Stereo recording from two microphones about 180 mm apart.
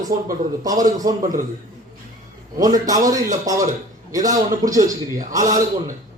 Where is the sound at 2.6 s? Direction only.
20° right (ahead or behind).